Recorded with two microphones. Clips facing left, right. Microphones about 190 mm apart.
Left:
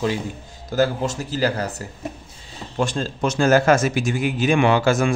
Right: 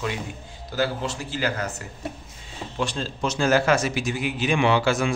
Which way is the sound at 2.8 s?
45° left (ahead or behind).